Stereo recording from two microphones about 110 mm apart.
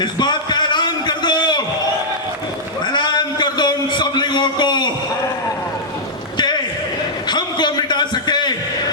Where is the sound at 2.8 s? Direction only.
45° left (ahead or behind).